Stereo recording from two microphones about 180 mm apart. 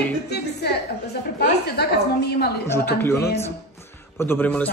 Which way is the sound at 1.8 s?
65° left (ahead or behind).